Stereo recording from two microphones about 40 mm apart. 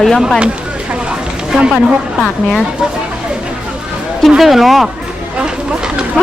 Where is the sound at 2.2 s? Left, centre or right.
Centre.